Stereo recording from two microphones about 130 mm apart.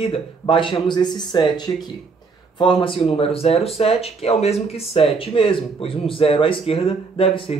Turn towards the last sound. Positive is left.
turn(degrees=45)  # may be behind; listen again after turning